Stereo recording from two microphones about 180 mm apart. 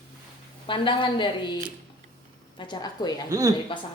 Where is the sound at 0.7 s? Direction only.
25° left (ahead or behind).